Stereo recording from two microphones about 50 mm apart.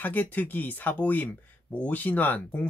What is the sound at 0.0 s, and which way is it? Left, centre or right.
Speech, left.